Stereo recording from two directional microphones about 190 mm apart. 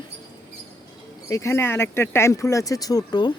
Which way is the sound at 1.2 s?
15° left (ahead or behind).